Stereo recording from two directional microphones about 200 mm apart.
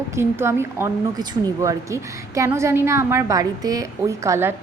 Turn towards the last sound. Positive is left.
turn(degrees=-15)  # may be behind; listen again after turning